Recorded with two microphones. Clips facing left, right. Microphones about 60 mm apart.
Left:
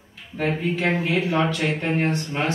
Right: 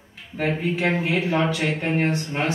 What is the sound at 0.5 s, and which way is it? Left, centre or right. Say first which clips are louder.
Speech: even; centre.